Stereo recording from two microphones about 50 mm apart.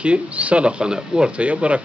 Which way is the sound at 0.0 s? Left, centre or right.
Right.